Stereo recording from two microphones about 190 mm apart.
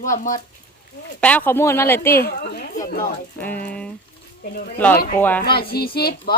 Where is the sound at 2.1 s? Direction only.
50° left (ahead or behind).